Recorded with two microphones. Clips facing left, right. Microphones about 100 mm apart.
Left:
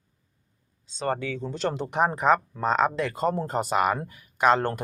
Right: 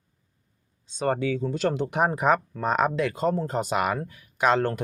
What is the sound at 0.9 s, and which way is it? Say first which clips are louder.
Speech: right 3 dB; 10° right (ahead or behind).